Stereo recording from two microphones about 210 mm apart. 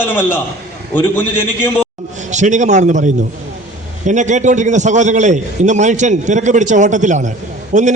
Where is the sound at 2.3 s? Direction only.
35° right (ahead or behind).